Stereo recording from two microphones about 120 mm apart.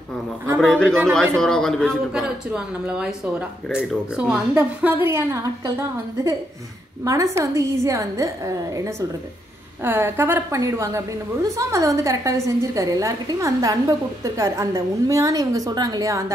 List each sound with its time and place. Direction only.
0.6 s a man's voice: 5° left (ahead or behind)
2.2 s a woman's voice: 10° right (ahead or behind); by 16.3 s 25° right (ahead or behind)